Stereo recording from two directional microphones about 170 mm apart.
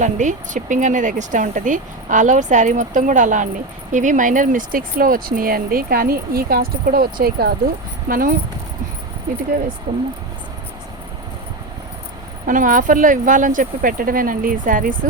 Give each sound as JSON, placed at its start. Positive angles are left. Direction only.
{"t": 0.0, "sound": "speech", "side_deg": -45}
{"t": 9.9, "sound": "speech", "side_deg": -30}
{"t": 12.5, "sound": "speech", "side_deg": -50}